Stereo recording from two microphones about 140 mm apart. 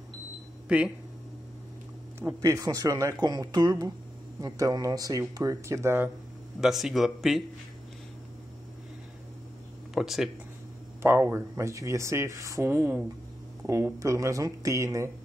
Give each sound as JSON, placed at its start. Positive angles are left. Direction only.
{"t": 0.7, "sound": "speech", "side_deg": -10}
{"t": 2.1, "sound": "speech", "side_deg": -20}
{"t": 6.6, "sound": "speech", "side_deg": 0}
{"t": 9.9, "sound": "speech", "side_deg": 0}
{"t": 11.0, "sound": "speech", "side_deg": -15}